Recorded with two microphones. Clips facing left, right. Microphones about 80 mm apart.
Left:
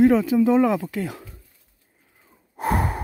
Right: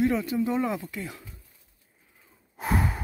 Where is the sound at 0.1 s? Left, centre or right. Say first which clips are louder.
Left 9 dB; left.